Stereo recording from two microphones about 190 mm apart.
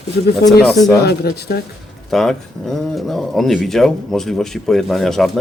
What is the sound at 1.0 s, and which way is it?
Speech, 55° left (ahead or behind).